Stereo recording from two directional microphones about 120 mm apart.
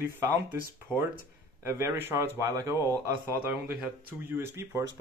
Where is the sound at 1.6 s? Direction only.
20° right (ahead or behind).